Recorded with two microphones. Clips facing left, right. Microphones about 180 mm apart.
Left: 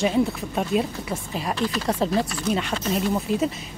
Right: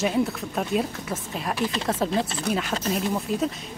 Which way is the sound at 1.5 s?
20° right (ahead or behind).